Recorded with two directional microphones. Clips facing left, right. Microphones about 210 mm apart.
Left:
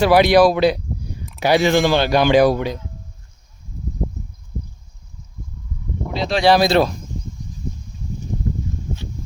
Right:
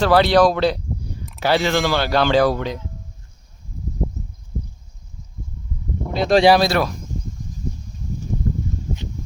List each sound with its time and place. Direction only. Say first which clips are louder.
0.0 s speech: left 2 dB; 15° left (ahead or behind)
6.1 s speech: right 6 dB; 50° right (ahead or behind)
6.6 s speech: left 3 dB; 25° left (ahead or behind)